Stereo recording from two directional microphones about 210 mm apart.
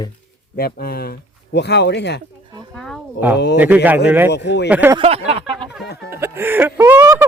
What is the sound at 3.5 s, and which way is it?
Speech, 10° right (ahead or behind).